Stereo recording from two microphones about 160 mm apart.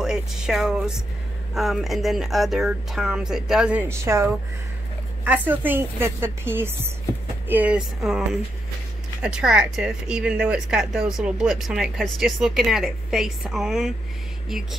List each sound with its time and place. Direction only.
0.0 s speech: 5° right (ahead or behind)
4.0 s a woman's voice: 15° right (ahead or behind)